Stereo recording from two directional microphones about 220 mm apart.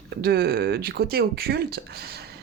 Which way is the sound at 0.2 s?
45° right (ahead or behind).